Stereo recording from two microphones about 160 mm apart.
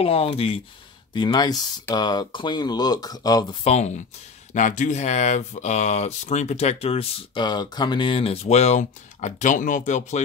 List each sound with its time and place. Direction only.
0.0 s speech: 35° left (ahead or behind)
3.6 s speech: 45° left (ahead or behind)